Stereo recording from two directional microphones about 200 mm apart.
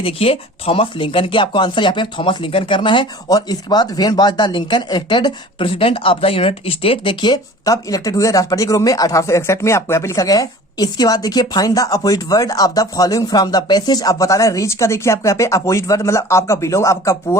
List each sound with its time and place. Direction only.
0.0 s speech: 30° left (ahead or behind)